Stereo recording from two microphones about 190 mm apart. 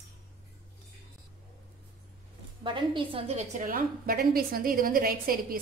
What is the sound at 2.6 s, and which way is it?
A woman's voice, 25° right (ahead or behind).